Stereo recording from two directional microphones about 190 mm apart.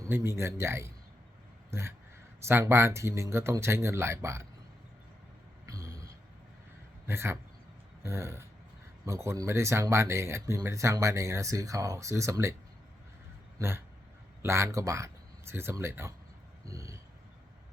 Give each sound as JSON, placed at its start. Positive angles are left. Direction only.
{"t": 0.0, "sound": "speech", "side_deg": -15}
{"t": 2.4, "sound": "speech", "side_deg": -15}
{"t": 5.6, "sound": "a sound", "side_deg": -15}
{"t": 7.1, "sound": "speech", "side_deg": -15}
{"t": 13.6, "sound": "speech", "side_deg": -10}
{"t": 16.6, "sound": "a sound", "side_deg": -15}